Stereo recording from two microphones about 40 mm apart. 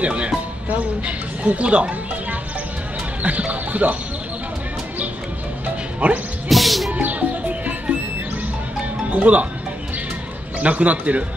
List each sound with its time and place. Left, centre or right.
0.0 s a woman's voice: right
3.2 s music: right
6.0 s a woman's voice: right
6.5 s music: centre
6.9 s music: right
9.1 s a woman's voice: right
10.6 s a woman's voice: right